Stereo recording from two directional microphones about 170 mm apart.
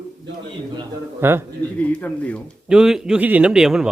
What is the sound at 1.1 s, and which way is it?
Speech, 15° right (ahead or behind).